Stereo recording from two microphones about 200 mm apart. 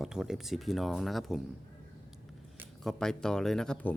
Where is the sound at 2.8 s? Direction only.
5° left (ahead or behind).